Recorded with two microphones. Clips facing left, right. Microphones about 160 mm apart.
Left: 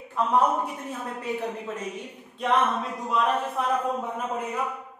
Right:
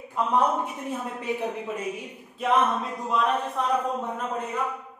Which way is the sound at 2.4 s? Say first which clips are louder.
Right 1 dB; centre (ahead or behind).